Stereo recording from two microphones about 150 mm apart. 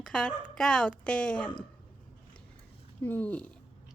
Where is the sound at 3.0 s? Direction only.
10° left (ahead or behind).